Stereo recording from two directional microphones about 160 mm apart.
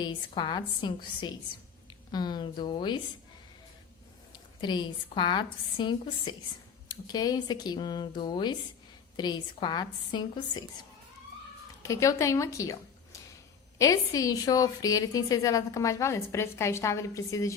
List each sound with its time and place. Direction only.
0.0 s a woman's voice: 30° left (ahead or behind)
4.3 s a woman's voice: 30° left (ahead or behind)
11.8 s a woman's voice: 20° left (ahead or behind)
13.7 s a woman's voice: 20° left (ahead or behind)